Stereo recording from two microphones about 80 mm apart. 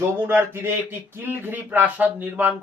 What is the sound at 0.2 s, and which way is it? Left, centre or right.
Speech, right.